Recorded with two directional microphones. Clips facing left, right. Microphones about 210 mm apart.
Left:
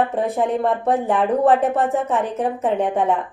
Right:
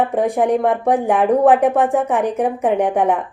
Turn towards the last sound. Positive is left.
turn(degrees=-15)  # may be behind; listen again after turning